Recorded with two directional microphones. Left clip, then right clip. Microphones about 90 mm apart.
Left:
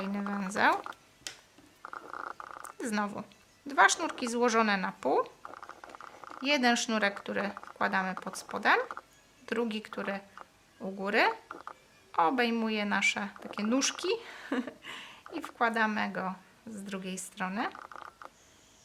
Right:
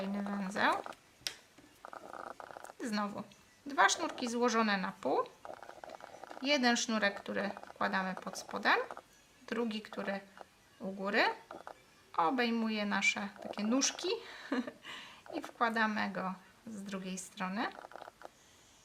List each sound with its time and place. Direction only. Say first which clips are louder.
0.0 s a sound: left 4 dB; 35° left (ahead or behind)
2.7 s a woman's voice: left 4 dB; 30° left (ahead or behind)
6.4 s a woman's voice: left 4 dB; 25° left (ahead or behind)